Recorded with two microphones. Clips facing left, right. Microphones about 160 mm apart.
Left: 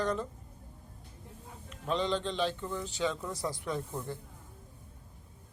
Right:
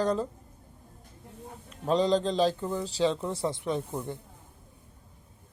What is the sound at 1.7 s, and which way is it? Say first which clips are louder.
A man's voice: right 7 dB; 35° right (ahead or behind).